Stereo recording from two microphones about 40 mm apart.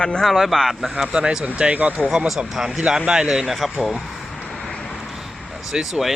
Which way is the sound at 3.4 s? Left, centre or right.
Centre.